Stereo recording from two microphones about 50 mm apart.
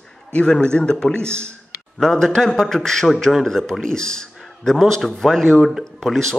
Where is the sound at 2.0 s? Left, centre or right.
Centre.